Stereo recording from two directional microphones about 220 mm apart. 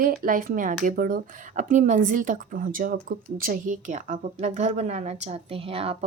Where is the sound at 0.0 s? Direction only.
40° right (ahead or behind).